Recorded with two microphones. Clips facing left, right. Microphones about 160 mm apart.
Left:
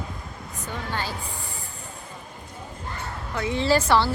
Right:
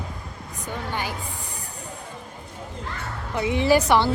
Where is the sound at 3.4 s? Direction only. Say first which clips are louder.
Right 3 dB; 15° right (ahead or behind).